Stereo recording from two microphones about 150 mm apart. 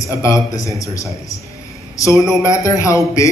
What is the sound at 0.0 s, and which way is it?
A man's voice, 20° left (ahead or behind).